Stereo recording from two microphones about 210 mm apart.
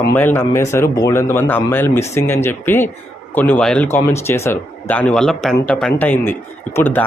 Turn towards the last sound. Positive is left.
turn(degrees=10)  # may be behind; listen again after turning